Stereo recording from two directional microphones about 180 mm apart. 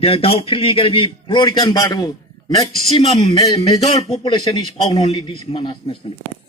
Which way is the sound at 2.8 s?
35° left (ahead or behind).